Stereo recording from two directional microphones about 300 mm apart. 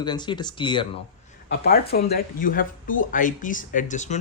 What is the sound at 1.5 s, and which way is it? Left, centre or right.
Speech, left.